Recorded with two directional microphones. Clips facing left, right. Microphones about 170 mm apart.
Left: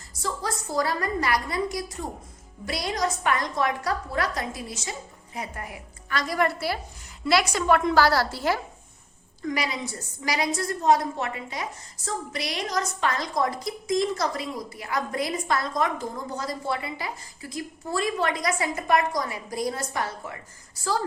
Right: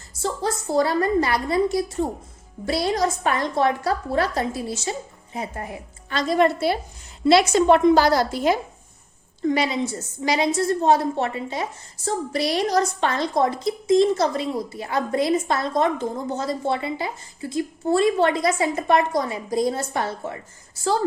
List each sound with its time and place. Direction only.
0.1 s a woman's voice: 25° right (ahead or behind)